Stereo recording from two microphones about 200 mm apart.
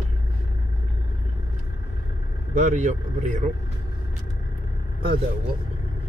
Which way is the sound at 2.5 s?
35° right (ahead or behind).